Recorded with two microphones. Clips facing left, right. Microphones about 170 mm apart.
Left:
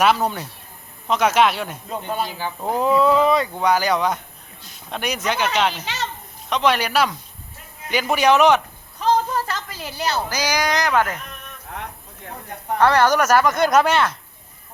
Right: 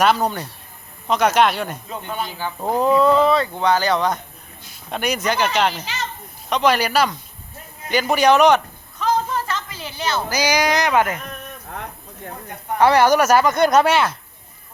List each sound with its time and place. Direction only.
0.0 s speech: 5° left (ahead or behind)
1.9 s speech: 40° left (ahead or behind)
2.8 s speech: 5° left (ahead or behind)
9.0 s a sound: 35° left (ahead or behind)
10.2 s speech: 10° right (ahead or behind)
12.8 s speech: 10° right (ahead or behind)
13.3 s speech: 25° right (ahead or behind)
13.6 s speech: centre (ahead or behind)